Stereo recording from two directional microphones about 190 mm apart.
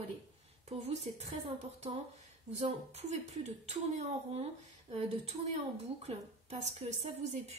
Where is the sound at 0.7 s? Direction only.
35° right (ahead or behind).